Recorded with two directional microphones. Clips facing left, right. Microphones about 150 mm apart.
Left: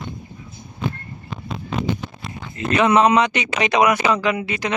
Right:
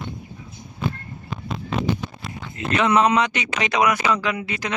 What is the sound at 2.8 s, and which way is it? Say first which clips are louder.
Speech: left 3 dB; 20° left (ahead or behind).